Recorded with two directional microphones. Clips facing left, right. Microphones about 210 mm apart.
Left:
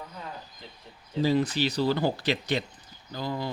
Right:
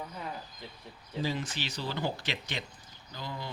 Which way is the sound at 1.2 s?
35° left (ahead or behind).